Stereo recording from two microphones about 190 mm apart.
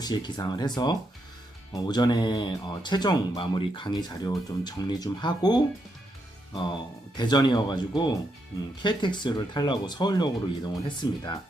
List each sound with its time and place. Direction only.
0.0 s speech: 20° left (ahead or behind)